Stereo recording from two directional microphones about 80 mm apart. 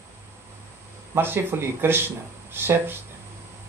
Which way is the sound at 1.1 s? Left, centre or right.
Right.